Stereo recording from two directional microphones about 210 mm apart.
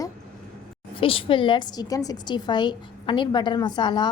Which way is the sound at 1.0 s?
25° left (ahead or behind).